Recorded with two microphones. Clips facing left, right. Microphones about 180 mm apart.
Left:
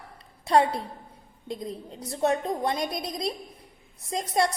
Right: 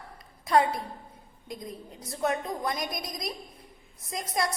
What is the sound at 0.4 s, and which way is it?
Speech, 30° left (ahead or behind).